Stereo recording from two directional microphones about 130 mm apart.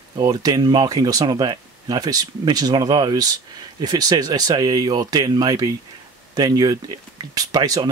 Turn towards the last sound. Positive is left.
turn(degrees=-30)  # may be behind; listen again after turning